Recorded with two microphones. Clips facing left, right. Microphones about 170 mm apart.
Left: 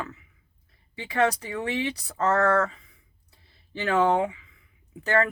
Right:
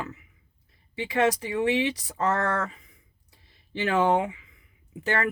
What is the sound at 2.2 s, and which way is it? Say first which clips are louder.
Speech: left 3 dB; 40° left (ahead or behind).